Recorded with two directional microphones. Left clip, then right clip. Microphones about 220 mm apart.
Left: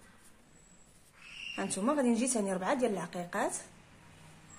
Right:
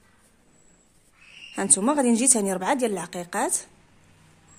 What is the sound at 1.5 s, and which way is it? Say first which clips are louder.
A woman's voice: right 9 dB; 50° right (ahead or behind).